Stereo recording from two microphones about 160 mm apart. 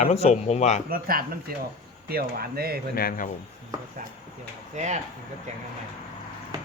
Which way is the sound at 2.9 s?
65° left (ahead or behind).